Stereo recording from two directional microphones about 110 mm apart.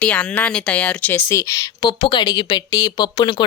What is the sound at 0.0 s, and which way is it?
Speech, 10° left (ahead or behind).